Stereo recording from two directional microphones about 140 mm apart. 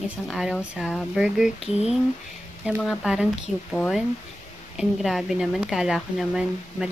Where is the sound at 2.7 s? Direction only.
Centre (ahead or behind).